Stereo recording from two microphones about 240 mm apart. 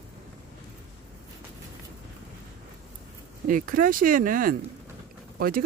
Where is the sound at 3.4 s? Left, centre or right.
Right.